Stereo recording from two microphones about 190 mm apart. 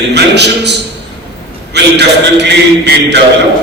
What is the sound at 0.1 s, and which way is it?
A man's voice, 65° right (ahead or behind).